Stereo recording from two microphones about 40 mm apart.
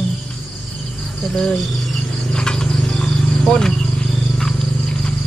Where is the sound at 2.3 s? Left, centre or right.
Centre.